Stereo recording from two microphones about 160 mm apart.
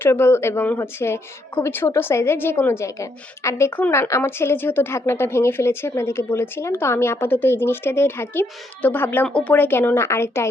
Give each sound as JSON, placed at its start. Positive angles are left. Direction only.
{"t": 0.0, "sound": "a woman's voice", "side_deg": 15}